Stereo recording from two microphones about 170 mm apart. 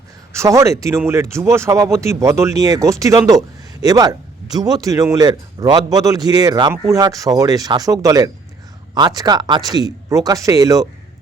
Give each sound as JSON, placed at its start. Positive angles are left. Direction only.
{"t": 0.3, "sound": "speech", "side_deg": -20}